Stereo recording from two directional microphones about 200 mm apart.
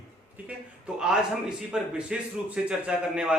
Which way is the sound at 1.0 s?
5° right (ahead or behind).